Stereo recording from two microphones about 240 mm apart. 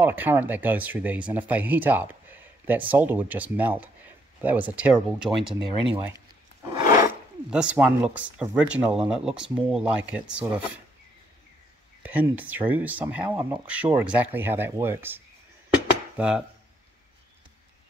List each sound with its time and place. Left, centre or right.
0.0 s speech: centre
5.6 s speech: centre
7.5 s speech: centre
12.0 s speech: centre